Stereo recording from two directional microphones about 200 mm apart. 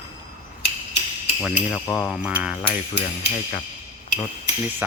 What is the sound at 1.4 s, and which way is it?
Speech, 5° left (ahead or behind).